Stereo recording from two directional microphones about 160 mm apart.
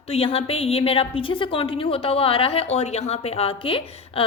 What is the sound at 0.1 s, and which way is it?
A woman's voice, 35° left (ahead or behind).